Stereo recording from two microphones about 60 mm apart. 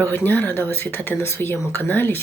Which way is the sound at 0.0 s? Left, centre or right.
Left.